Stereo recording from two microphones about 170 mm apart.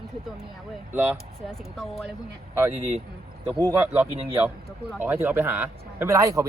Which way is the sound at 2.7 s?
40° right (ahead or behind).